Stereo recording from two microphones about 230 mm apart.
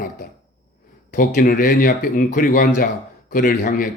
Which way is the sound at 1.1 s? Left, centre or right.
Left.